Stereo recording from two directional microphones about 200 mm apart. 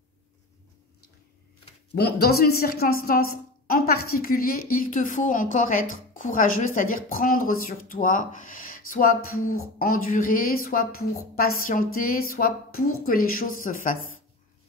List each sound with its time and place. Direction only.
2.0 s a woman's voice: 50° left (ahead or behind)